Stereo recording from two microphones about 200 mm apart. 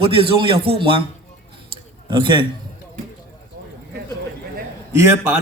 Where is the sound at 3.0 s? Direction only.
45° right (ahead or behind).